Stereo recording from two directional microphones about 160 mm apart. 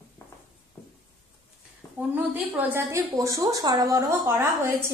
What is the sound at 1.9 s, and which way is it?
A woman's voice, 10° right (ahead or behind).